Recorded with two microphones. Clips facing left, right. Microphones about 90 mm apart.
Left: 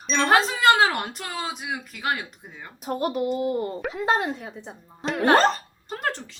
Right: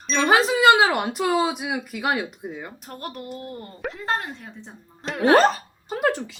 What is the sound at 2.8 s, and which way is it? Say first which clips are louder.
Speech: left 15 dB; 10° left (ahead or behind).